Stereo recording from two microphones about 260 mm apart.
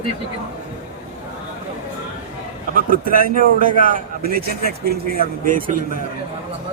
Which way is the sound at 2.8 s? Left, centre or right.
Right.